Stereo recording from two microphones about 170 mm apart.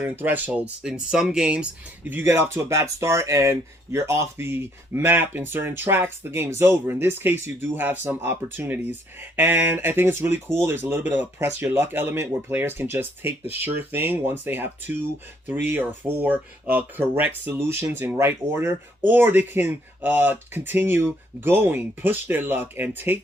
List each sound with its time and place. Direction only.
0.0 s speech: 10° right (ahead or behind)